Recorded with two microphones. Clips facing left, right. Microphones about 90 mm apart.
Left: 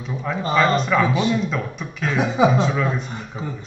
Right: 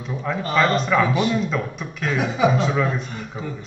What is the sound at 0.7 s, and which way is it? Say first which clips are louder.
Speech: even; centre (ahead or behind).